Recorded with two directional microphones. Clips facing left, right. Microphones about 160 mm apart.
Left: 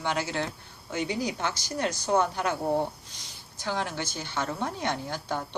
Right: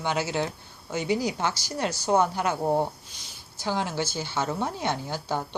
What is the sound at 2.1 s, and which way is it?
Speech, 25° right (ahead or behind).